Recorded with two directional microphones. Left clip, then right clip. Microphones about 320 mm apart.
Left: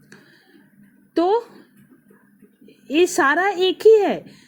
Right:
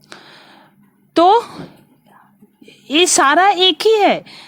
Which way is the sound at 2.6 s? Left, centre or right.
Centre.